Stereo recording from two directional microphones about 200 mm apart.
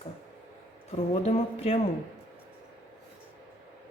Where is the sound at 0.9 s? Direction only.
30° left (ahead or behind).